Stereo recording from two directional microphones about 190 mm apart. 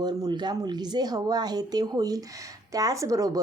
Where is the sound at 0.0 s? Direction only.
20° right (ahead or behind).